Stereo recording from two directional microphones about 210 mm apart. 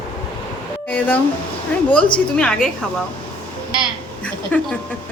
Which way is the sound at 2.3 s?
5° left (ahead or behind).